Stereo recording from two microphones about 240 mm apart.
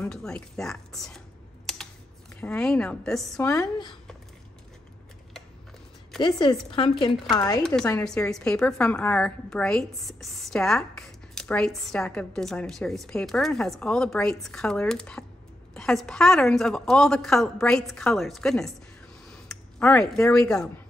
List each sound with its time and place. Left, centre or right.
0.0 s a woman's voice: centre
2.4 s a woman's voice: centre
3.3 s speech: centre
6.1 s speech: centre
8.0 s a woman's voice: centre